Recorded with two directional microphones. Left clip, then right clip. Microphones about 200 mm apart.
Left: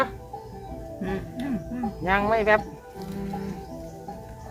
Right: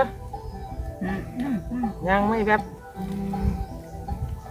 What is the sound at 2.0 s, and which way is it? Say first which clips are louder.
Speech: left 1 dB; 40° left (ahead or behind).